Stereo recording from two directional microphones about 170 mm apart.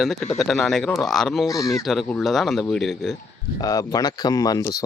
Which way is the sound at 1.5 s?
20° left (ahead or behind).